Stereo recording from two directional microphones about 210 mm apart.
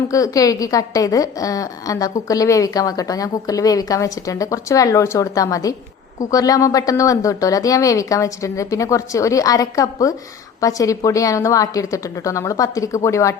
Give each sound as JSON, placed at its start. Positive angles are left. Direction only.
{"t": 0.1, "sound": "a woman's voice", "side_deg": 15}